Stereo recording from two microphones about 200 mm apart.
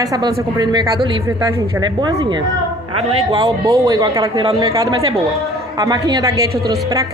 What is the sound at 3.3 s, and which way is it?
A woman's voice, 15° right (ahead or behind).